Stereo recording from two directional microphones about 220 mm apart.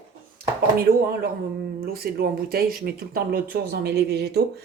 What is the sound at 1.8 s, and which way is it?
Speech, 45° right (ahead or behind).